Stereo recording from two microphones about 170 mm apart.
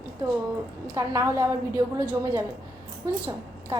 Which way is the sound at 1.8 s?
30° right (ahead or behind).